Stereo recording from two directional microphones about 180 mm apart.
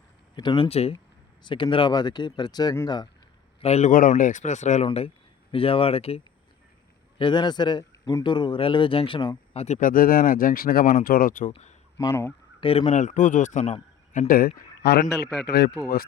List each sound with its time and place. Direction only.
0.3 s speech: 25° left (ahead or behind)
3.6 s speech: 35° left (ahead or behind)
4.9 s speech: 30° left (ahead or behind); by 11.5 s 50° left (ahead or behind)
11.9 s speech: 15° left (ahead or behind)
12.5 s speech: 30° left (ahead or behind); by 16.0 s 55° left (ahead or behind)